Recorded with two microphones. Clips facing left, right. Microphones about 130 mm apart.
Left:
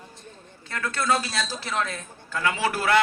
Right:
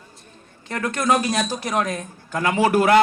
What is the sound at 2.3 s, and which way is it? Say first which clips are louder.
Speech: right 6 dB; 45° right (ahead or behind).